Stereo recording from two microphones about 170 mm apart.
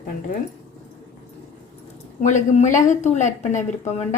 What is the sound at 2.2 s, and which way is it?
Speech, 45° left (ahead or behind).